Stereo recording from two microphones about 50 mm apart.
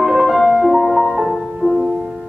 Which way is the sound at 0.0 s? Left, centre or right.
Centre.